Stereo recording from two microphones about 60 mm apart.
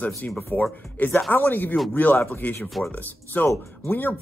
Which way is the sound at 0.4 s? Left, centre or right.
Left.